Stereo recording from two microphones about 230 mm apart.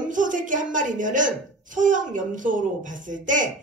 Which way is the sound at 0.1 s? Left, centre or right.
Right.